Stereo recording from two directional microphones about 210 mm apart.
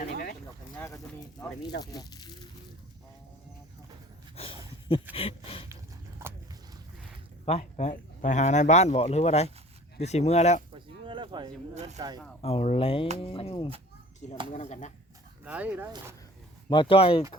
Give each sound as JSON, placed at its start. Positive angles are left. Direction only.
{"t": 1.8, "sound": "speech", "side_deg": 20}
{"t": 4.4, "sound": "a sound", "side_deg": 25}
{"t": 5.1, "sound": "speech", "side_deg": 25}
{"t": 7.4, "sound": "speech", "side_deg": 30}
{"t": 10.7, "sound": "a sound", "side_deg": -25}
{"t": 11.7, "sound": "speech", "side_deg": -35}
{"t": 11.9, "sound": "speech", "side_deg": -20}
{"t": 12.4, "sound": "speech", "side_deg": 30}
{"t": 15.4, "sound": "speech", "side_deg": -10}
{"t": 16.6, "sound": "speech", "side_deg": 25}